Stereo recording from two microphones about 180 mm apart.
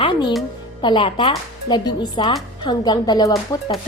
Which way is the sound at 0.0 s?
25° left (ahead or behind).